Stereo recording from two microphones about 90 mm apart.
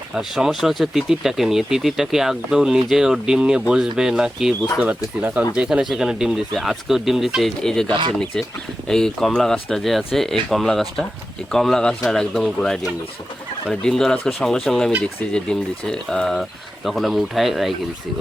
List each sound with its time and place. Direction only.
0.1 s speech: 5° right (ahead or behind)
4.8 s speech: 20° right (ahead or behind)
5.5 s speech: 10° right (ahead or behind)